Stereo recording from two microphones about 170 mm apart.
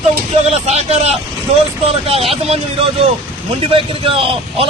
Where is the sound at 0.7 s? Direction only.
40° right (ahead or behind).